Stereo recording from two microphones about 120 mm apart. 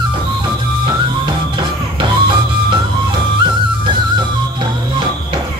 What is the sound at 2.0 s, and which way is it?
Music, 40° right (ahead or behind).